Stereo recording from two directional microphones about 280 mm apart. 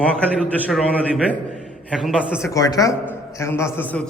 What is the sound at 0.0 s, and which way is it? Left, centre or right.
A man's voice, centre.